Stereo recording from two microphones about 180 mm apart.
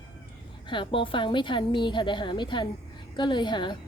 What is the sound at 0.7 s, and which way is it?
A woman's voice, 30° left (ahead or behind).